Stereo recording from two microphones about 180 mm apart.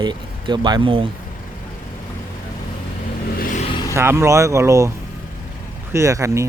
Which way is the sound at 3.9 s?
15° right (ahead or behind).